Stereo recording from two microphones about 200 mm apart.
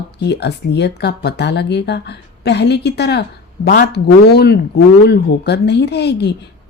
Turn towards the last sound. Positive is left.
turn(degrees=55)  # may be behind; listen again after turning